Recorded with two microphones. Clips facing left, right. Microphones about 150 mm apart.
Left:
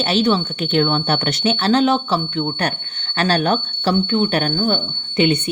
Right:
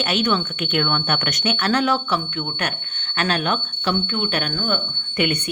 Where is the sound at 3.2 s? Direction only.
35° left (ahead or behind).